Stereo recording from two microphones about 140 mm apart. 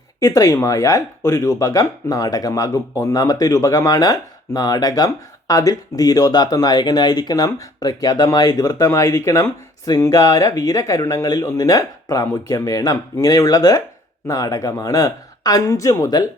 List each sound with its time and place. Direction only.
0.2 s speech: 25° left (ahead or behind)